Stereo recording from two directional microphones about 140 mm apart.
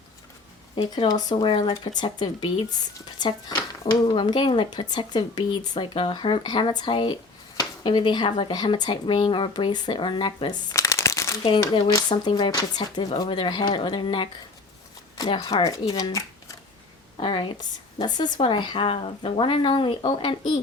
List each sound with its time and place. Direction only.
1.2 s speech: 30° left (ahead or behind)
10.8 s shuffling cards: 20° left (ahead or behind)
11.9 s speech: 30° left (ahead or behind)
15.3 s speech: 40° left (ahead or behind)
15.6 s speech: 25° left (ahead or behind)
17.2 s speech: 35° left (ahead or behind)